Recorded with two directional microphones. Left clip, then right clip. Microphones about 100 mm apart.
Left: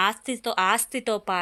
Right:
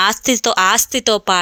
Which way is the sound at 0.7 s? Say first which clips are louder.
Right 9 dB; 45° right (ahead or behind).